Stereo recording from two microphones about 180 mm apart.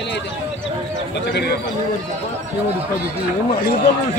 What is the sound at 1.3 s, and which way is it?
Speech, 65° left (ahead or behind).